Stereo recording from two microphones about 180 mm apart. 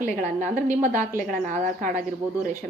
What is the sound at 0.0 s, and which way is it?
A woman's voice, 45° right (ahead or behind).